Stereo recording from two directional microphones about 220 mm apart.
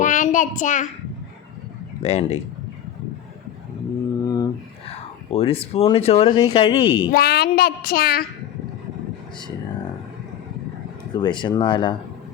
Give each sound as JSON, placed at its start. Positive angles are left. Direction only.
{"t": 0.0, "sound": "a child's voice", "side_deg": 35}
{"t": 2.0, "sound": "speech", "side_deg": 30}
{"t": 4.2, "sound": "a sound", "side_deg": 15}
{"t": 7.1, "sound": "a woman's voice", "side_deg": 45}
{"t": 11.1, "sound": "speech", "side_deg": 20}